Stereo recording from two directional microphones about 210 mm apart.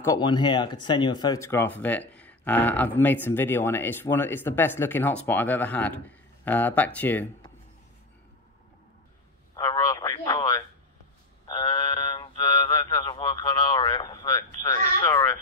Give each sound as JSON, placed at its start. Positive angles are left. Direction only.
{"t": 0.0, "sound": "speech", "side_deg": 15}
{"t": 9.6, "sound": "radio", "side_deg": 15}
{"t": 11.4, "sound": "a sound", "side_deg": 20}